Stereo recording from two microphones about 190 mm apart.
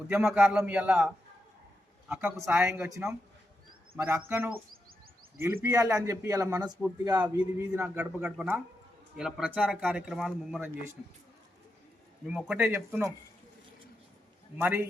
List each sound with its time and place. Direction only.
0.1 s a man's voice: 5° right (ahead or behind); by 7.3 s 20° right (ahead or behind)
7.8 s a man's voice: 10° right (ahead or behind)
12.3 s a man's voice: 5° right (ahead or behind)
14.6 s a man's voice: 10° right (ahead or behind)